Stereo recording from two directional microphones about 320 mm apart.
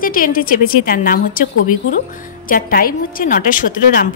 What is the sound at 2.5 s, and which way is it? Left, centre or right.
A woman's voice, left.